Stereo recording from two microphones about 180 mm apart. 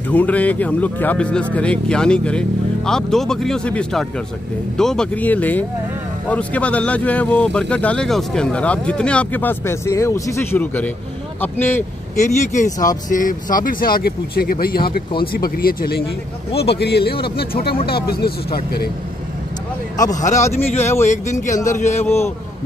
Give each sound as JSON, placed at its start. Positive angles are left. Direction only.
{"t": 0.1, "sound": "speech", "side_deg": 10}
{"t": 12.2, "sound": "speech", "side_deg": 40}
{"t": 20.0, "sound": "a man's voice", "side_deg": 20}
{"t": 21.1, "sound": "speech", "side_deg": 40}
{"t": 22.0, "sound": "speech", "side_deg": 15}